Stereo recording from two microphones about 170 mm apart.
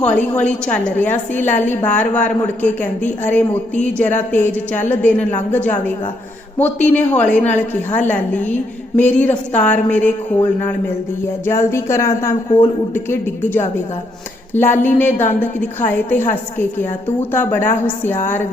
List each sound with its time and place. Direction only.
0.0 s a woman's voice: 10° left (ahead or behind)
11.7 s a woman's voice: 15° left (ahead or behind)